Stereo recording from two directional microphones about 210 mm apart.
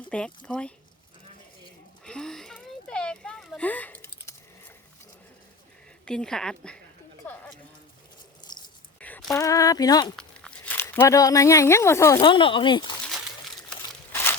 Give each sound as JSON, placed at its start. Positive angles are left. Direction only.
{"t": 0.1, "sound": "speech", "side_deg": 5}
{"t": 2.0, "sound": "a sound", "side_deg": 5}
{"t": 6.1, "sound": "speech", "side_deg": 5}
{"t": 9.0, "sound": "a sound", "side_deg": 5}
{"t": 9.4, "sound": "speech", "side_deg": 15}
{"t": 10.2, "sound": "speech", "side_deg": 5}
{"t": 12.2, "sound": "speech", "side_deg": 25}